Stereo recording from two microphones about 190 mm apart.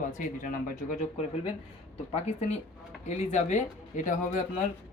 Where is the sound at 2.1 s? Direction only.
35° left (ahead or behind).